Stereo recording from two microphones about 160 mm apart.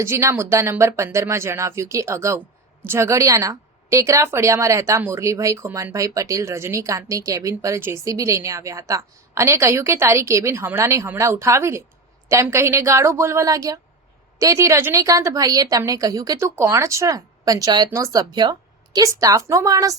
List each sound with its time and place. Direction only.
0.0 s a woman's voice: 15° right (ahead or behind)